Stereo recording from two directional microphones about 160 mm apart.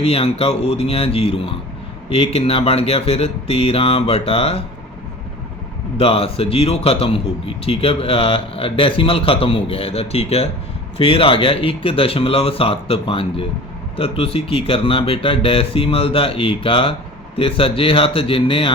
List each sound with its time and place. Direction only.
0.0 s a man's voice: 40° left (ahead or behind)
6.0 s a man's voice: 35° left (ahead or behind)